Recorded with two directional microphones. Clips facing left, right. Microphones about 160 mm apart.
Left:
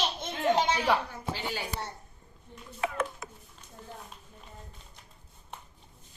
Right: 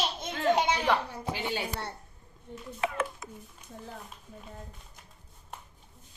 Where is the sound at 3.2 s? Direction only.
65° left (ahead or behind).